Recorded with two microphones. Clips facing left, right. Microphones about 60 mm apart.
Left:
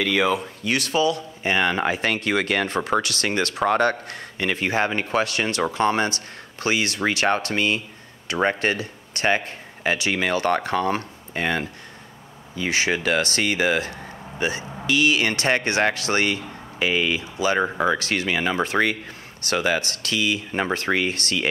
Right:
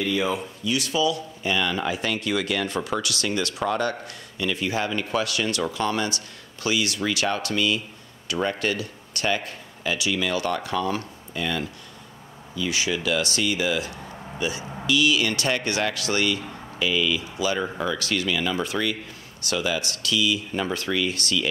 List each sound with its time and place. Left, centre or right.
0.0 s speech: left
0.6 s speech: left